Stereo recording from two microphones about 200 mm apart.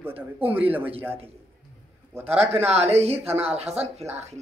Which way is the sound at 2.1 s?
10° right (ahead or behind).